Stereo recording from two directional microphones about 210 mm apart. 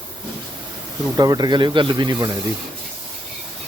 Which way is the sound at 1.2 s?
20° right (ahead or behind).